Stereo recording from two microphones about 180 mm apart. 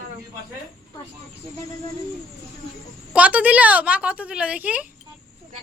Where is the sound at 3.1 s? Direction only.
5° right (ahead or behind).